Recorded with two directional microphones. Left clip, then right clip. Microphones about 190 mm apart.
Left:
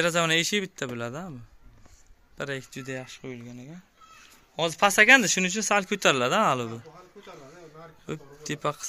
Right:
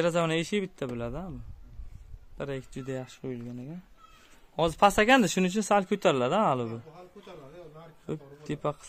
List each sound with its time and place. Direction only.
0.0 s speech: 10° right (ahead or behind)
2.3 s a man's voice: 5° right (ahead or behind)
2.7 s a man's voice: 20° right (ahead or behind)
8.1 s speech: 10° right (ahead or behind)